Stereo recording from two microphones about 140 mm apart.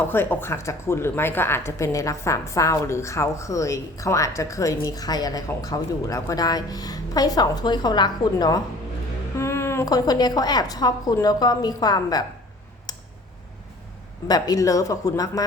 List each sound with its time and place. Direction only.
0.0 s speech: 15° left (ahead or behind)
9.4 s speech: 20° left (ahead or behind)
14.3 s speech: 25° left (ahead or behind)